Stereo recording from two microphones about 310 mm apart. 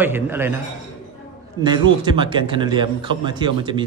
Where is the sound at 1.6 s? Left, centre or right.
Centre.